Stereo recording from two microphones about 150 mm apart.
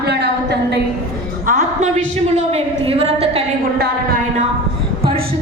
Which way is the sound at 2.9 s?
40° right (ahead or behind).